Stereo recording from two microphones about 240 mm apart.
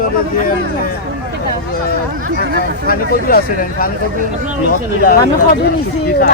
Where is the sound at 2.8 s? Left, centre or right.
Left.